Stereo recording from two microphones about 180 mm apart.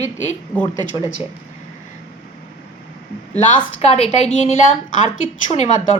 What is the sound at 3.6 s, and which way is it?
Speech, 35° left (ahead or behind).